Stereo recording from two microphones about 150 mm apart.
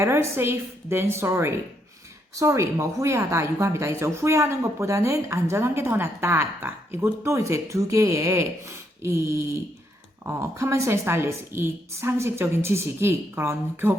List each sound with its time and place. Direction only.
0.0 s a woman's voice: 15° right (ahead or behind)